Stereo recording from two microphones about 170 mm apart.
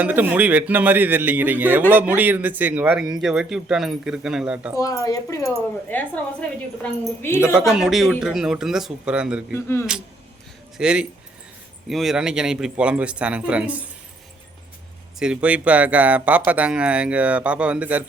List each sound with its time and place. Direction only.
0.0 s a man's voice: 10° right (ahead or behind)
4.7 s speech: 20° left (ahead or behind)
7.2 s speech: 15° left (ahead or behind)
7.7 s speech: centre (ahead or behind)
9.6 s speech: 15° left (ahead or behind)
10.8 s a man's voice: 5° right (ahead or behind)
15.2 s a man's voice: 5° right (ahead or behind)